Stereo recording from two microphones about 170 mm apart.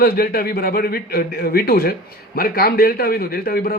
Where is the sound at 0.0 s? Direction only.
60° left (ahead or behind).